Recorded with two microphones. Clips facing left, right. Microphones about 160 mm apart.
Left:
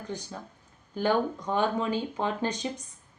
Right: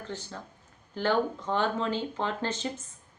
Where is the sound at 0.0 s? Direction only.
15° left (ahead or behind).